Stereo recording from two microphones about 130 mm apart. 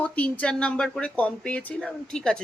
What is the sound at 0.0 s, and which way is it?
Speech, 10° left (ahead or behind).